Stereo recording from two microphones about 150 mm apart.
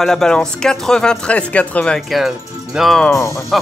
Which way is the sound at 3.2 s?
20° left (ahead or behind).